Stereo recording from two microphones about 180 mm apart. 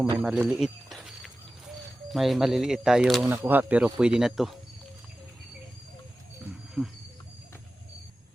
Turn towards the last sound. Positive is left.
turn(degrees=0)  # may be behind; listen again after turning